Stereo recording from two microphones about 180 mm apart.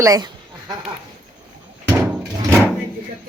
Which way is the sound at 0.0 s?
20° right (ahead or behind).